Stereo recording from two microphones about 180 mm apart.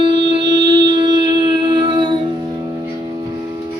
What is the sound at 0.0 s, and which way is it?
Music, 25° right (ahead or behind).